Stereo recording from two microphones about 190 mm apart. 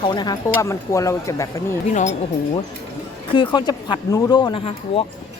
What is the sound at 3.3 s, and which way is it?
Speech, 25° left (ahead or behind).